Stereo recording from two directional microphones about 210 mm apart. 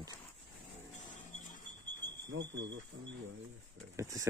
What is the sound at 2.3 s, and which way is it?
Speech, 60° right (ahead or behind).